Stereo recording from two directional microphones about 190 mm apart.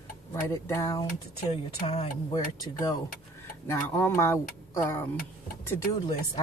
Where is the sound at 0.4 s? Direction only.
15° left (ahead or behind).